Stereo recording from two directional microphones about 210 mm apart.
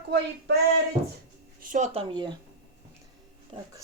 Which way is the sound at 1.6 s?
35° right (ahead or behind).